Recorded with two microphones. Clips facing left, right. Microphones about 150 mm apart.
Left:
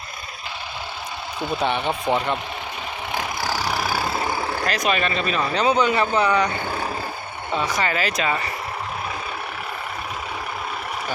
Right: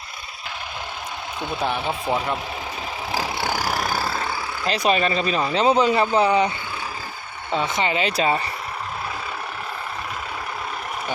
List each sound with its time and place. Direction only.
1.6 s speech: 5° right (ahead or behind)
3.1 s vehicle: 30° right (ahead or behind)
3.6 s vehicle: centre (ahead or behind)
4.6 s speech: 30° right (ahead or behind)
6.5 s vehicle: 50° left (ahead or behind)
7.5 s speech: 25° right (ahead or behind)